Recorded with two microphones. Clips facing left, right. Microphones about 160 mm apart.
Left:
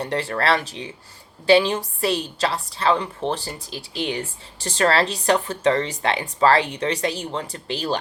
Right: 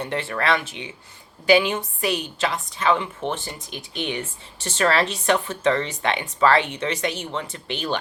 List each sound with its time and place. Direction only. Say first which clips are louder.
0.0 s speech: left 2 dB; 35° left (ahead or behind)